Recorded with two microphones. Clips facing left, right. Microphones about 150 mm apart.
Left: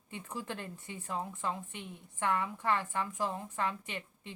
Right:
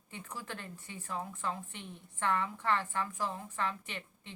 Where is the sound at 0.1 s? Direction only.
20° left (ahead or behind).